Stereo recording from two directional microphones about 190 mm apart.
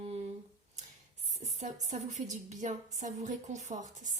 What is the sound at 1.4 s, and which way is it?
A woman's voice, 35° right (ahead or behind).